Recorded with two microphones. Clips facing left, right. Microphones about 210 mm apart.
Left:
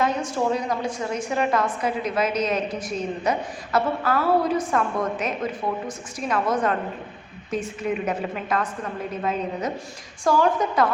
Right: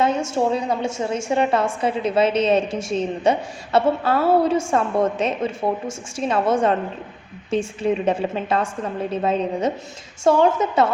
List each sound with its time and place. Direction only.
0.0 s a woman's voice: 25° right (ahead or behind)